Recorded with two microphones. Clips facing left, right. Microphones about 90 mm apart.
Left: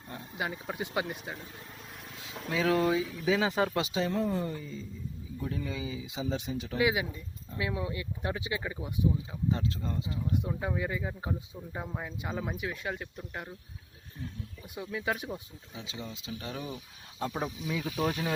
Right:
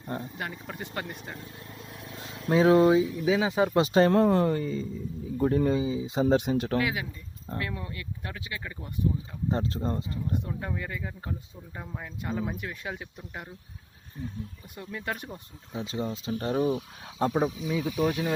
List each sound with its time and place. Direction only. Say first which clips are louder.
0.3 s speech: left 2 dB; 10° left (ahead or behind)
2.2 s speech: right 8 dB; 35° right (ahead or behind)
3.2 s speech: right 3 dB; 15° right (ahead or behind)
3.9 s speech: right 9 dB; 65° right (ahead or behind)
5.8 s speech: right 9 dB; 30° right (ahead or behind)
6.1 s speech: right 11 dB; 55° right (ahead or behind)
6.7 s speech: even; 15° left (ahead or behind)
9.5 s speech: right 4 dB; 40° right (ahead or behind)
10.4 s speech: left 2 dB; 10° left (ahead or behind)
15.7 s speech: right 10 dB; 45° right (ahead or behind)
17.3 s speech: right 7 dB; 15° right (ahead or behind)
17.8 s speech: right 4 dB; 5° right (ahead or behind)